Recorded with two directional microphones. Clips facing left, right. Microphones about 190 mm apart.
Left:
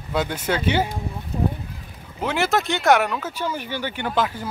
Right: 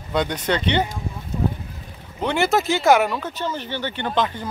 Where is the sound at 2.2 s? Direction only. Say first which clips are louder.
Right 2 dB; centre (ahead or behind).